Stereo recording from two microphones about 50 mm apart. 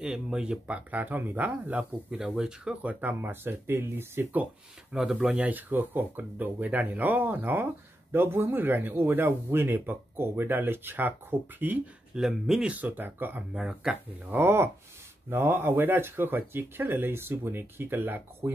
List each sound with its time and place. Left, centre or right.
0.3 s speech: right
0.9 s speech: right
2.1 s speech: centre
2.7 s speech: right
4.9 s speech: centre
5.4 s speech: right
8.1 s speech: right
12.2 s speech: centre
12.6 s speech: right
13.5 s speech: centre
14.3 s speech: right